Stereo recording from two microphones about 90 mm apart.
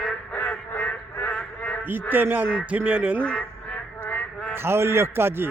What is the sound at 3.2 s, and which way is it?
Speech, 10° left (ahead or behind).